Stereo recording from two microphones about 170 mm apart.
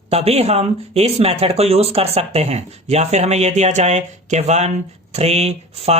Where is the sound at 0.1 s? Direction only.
35° right (ahead or behind).